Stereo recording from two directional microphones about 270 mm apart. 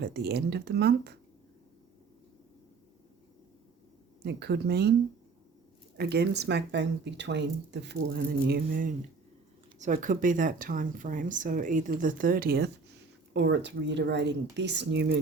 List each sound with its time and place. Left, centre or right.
0.0 s speech: right
4.2 s speech: right
6.0 s speech: right